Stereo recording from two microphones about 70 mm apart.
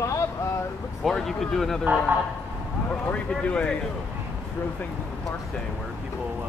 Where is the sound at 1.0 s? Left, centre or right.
Centre.